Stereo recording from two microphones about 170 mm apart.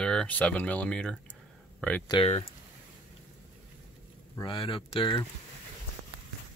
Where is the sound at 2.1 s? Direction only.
35° left (ahead or behind).